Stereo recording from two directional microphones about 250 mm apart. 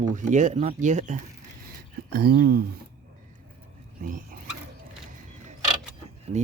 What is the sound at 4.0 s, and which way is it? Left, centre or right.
Speech, right.